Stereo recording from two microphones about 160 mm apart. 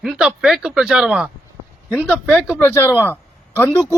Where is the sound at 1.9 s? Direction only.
10° left (ahead or behind).